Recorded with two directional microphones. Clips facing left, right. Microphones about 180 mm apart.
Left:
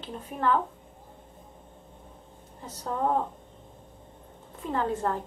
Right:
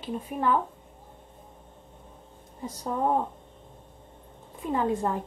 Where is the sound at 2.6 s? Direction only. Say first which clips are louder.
Right 1 dB; 10° right (ahead or behind).